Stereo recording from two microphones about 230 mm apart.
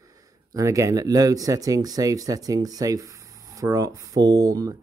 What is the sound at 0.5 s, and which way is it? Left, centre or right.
Speech, centre.